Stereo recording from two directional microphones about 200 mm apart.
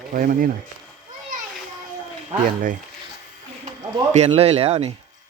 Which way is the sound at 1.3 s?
40° right (ahead or behind).